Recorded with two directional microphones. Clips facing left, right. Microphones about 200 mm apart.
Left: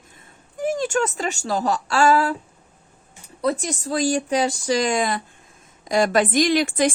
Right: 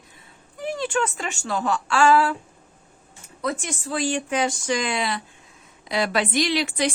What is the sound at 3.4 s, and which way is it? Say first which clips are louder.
A woman's voice: left 5 dB; 35° left (ahead or behind).